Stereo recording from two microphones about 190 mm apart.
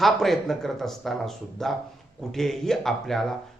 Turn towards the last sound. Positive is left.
turn(degrees=0)  # may be behind; listen again after turning